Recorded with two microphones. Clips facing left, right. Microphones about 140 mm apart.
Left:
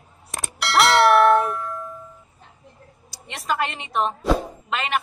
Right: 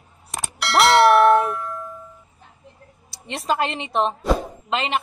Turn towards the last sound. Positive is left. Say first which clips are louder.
# right 2 dB
turn(degrees=-25)  # may be behind; listen again after turning